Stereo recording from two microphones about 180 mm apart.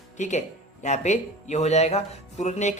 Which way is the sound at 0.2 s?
40° left (ahead or behind).